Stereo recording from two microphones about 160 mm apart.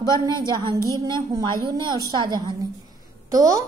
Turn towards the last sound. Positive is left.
turn(degrees=-20)  # may be behind; listen again after turning